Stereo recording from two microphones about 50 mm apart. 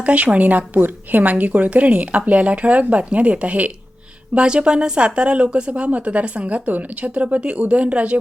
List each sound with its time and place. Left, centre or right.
0.0 s speech: right